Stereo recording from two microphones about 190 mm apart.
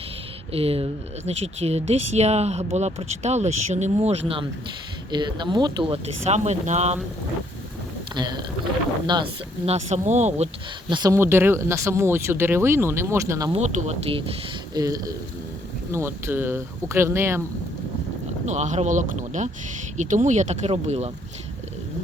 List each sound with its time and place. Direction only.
0.5 s speech: 30° right (ahead or behind)
8.1 s speech: 20° right (ahead or behind)
10.8 s speech: 20° right (ahead or behind)
13.5 s speech: 35° right (ahead or behind)
14.8 s speech: 20° right (ahead or behind)
18.4 s speech: 40° right (ahead or behind)